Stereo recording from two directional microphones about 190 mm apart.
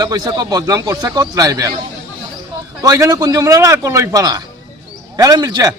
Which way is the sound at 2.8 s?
20° right (ahead or behind).